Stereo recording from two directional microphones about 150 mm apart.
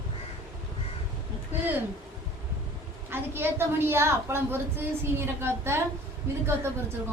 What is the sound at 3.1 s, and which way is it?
A woman's voice, 15° right (ahead or behind).